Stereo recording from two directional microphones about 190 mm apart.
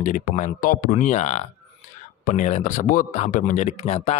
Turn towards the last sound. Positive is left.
turn(degrees=35)  # may be behind; listen again after turning